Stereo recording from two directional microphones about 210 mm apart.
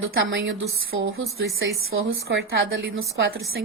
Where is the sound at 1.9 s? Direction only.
70° right (ahead or behind).